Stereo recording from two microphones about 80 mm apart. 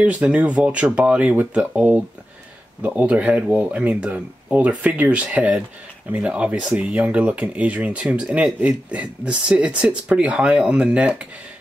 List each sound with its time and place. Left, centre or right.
0.0 s speech: centre